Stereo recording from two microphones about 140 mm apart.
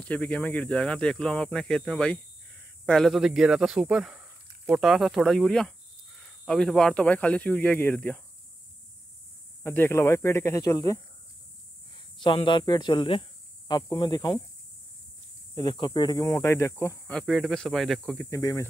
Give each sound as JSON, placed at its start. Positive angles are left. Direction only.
{"t": 0.0, "sound": "speech", "side_deg": 10}
{"t": 9.6, "sound": "speech", "side_deg": 15}
{"t": 12.2, "sound": "speech", "side_deg": 35}
{"t": 15.5, "sound": "speech", "side_deg": 35}
{"t": 17.1, "sound": "speech", "side_deg": 0}
{"t": 18.3, "sound": "speech", "side_deg": 25}